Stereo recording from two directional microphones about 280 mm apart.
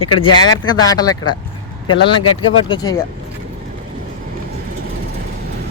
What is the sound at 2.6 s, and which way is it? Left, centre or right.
Speech, centre.